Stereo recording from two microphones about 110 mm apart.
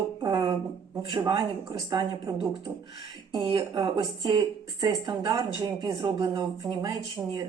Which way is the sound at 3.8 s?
40° right (ahead or behind).